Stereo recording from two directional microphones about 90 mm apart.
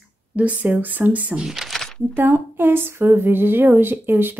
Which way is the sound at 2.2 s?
25° right (ahead or behind).